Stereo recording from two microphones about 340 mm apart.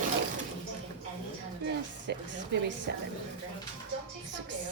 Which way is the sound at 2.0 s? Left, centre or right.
Right.